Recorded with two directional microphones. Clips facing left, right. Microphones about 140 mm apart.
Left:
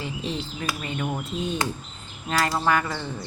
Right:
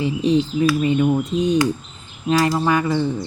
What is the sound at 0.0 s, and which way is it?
Speech, 15° right (ahead or behind).